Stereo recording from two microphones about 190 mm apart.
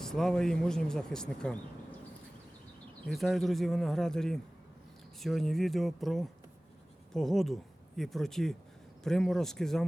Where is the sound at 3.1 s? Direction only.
Centre (ahead or behind).